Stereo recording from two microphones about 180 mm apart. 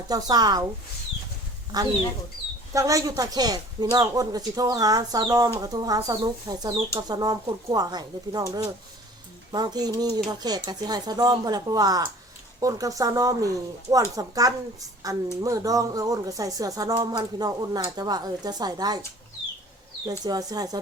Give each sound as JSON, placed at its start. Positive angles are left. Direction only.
{"t": 0.1, "sound": "speech", "side_deg": -20}
{"t": 1.7, "sound": "speech", "side_deg": -20}
{"t": 20.1, "sound": "speech", "side_deg": -20}